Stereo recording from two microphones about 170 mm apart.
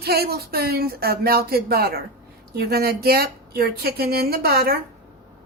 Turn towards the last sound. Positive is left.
turn(degrees=-65)  # may be behind; listen again after turning